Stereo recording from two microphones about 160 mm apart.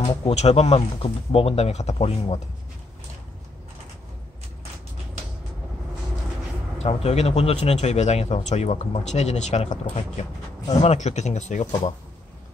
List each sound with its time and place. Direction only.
0.0 s a sound: 25° left (ahead or behind)
0.3 s speech: 45° left (ahead or behind)
6.8 s a man's voice: 40° left (ahead or behind)